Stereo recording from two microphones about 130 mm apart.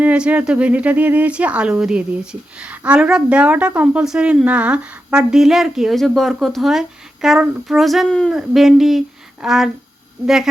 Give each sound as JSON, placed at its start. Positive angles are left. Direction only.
{"t": 0.0, "sound": "speech", "side_deg": -10}